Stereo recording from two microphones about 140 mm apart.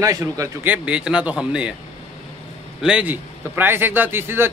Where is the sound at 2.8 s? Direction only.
10° right (ahead or behind).